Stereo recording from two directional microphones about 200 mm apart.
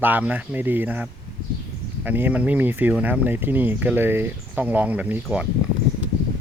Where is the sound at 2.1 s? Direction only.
10° right (ahead or behind).